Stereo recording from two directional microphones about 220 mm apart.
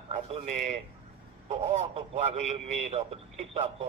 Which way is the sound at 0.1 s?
35° right (ahead or behind).